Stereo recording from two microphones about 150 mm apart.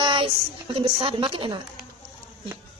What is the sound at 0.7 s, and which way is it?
Speech, 35° right (ahead or behind).